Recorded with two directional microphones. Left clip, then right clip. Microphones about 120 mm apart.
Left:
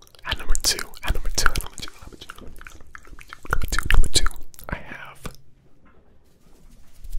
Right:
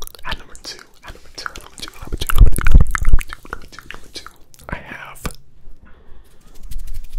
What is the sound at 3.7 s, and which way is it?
Chewing, 75° left (ahead or behind).